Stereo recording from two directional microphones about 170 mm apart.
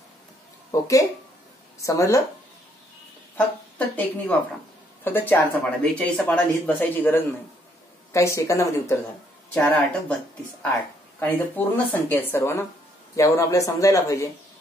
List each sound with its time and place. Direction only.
0.7 s a man's voice: 20° left (ahead or behind)
3.3 s speech: 10° left (ahead or behind)
11.1 s a man's voice: 10° left (ahead or behind)